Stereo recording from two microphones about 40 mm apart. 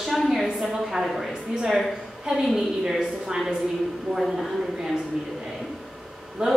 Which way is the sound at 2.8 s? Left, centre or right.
Centre.